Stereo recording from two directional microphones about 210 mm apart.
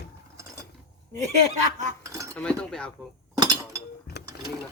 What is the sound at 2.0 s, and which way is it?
Cutlery, 15° right (ahead or behind).